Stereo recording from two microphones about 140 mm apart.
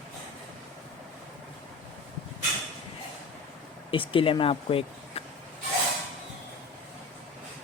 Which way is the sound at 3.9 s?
40° left (ahead or behind).